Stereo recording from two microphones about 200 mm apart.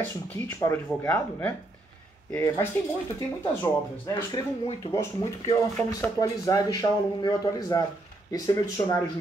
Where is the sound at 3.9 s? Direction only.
15° left (ahead or behind).